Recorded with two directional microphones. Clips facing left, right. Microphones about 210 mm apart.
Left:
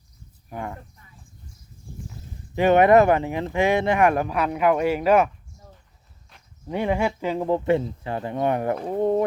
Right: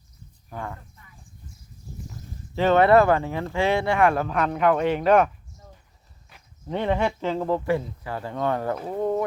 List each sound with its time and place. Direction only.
0.5 s speech: 15° left (ahead or behind)
2.6 s speech: 15° left (ahead or behind)
6.7 s speech: 10° left (ahead or behind)